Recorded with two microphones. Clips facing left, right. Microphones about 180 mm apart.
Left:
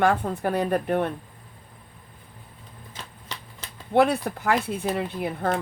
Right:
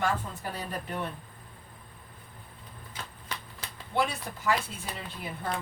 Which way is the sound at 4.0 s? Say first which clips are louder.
Left 10 dB; 60° left (ahead or behind).